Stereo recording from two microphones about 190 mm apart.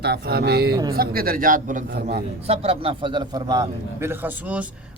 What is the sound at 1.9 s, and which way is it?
Speech, 55° right (ahead or behind).